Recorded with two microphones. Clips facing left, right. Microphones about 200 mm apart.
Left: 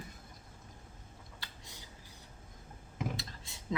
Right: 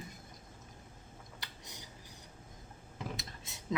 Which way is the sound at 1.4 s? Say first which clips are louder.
Right 1 dB; 20° right (ahead or behind).